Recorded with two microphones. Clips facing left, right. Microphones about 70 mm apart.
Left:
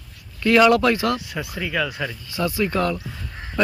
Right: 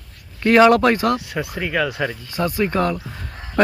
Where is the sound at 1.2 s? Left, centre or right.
Right.